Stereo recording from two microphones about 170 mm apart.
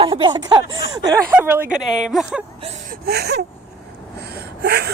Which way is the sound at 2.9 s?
70° right (ahead or behind).